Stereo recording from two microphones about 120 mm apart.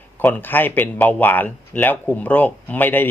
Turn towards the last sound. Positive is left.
turn(degrees=15)  # may be behind; listen again after turning